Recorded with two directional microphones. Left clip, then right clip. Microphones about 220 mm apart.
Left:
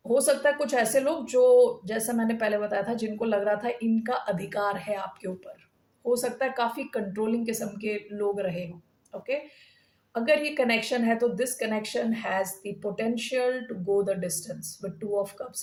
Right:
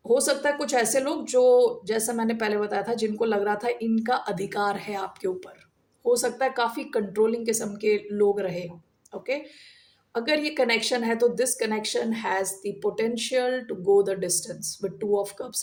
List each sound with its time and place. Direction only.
0.1 s speech: 40° right (ahead or behind)
10.2 s speech: 40° right (ahead or behind)